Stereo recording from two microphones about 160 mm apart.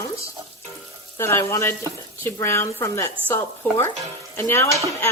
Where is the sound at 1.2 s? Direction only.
15° left (ahead or behind).